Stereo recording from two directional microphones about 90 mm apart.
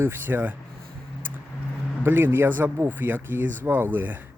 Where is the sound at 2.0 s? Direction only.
25° right (ahead or behind).